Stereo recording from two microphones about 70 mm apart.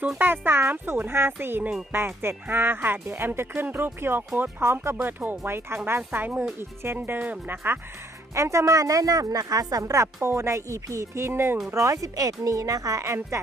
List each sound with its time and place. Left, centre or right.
0.2 s speech: right
8.4 s a woman's voice: right